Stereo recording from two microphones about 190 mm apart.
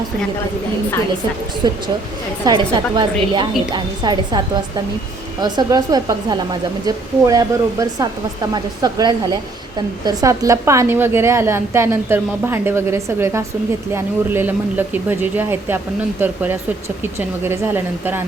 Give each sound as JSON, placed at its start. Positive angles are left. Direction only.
{"t": 1.6, "sound": "a woman's voice", "side_deg": -20}